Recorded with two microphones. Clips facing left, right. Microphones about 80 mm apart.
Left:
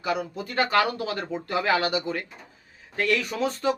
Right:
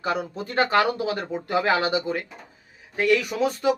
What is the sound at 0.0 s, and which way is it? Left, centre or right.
A man's voice, right.